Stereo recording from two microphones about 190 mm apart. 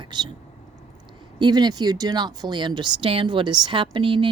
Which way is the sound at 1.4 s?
20° right (ahead or behind).